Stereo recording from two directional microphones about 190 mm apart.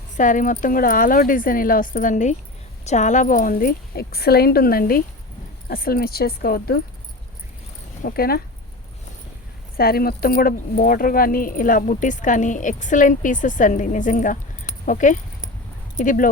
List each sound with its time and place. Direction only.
0.2 s speech: 45° left (ahead or behind)
8.0 s speech: 55° left (ahead or behind)
9.7 s speech: 55° left (ahead or behind)